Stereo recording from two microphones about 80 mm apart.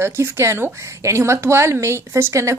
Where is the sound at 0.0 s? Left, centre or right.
Right.